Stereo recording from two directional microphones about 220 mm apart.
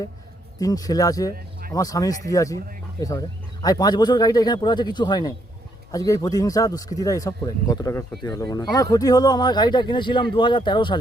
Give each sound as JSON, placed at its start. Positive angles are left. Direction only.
{"t": 0.6, "sound": "speech", "side_deg": 15}